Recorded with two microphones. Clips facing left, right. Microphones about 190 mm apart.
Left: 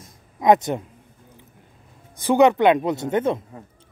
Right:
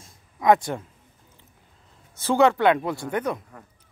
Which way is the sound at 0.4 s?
20° left (ahead or behind).